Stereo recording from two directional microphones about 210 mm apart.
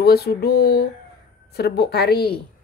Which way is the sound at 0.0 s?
50° left (ahead or behind).